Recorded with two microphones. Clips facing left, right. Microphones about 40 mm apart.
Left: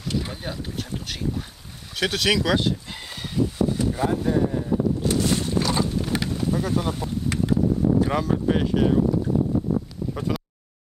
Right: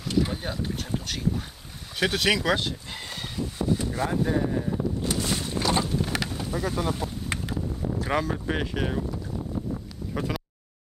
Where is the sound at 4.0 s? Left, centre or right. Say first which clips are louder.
Left 5 dB; centre.